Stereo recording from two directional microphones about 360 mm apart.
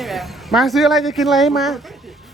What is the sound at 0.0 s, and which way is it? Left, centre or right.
Speech, centre.